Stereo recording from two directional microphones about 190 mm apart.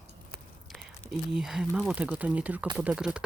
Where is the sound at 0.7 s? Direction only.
Centre (ahead or behind).